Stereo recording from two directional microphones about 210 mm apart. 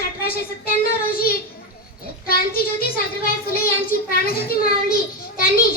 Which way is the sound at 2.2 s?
45° left (ahead or behind).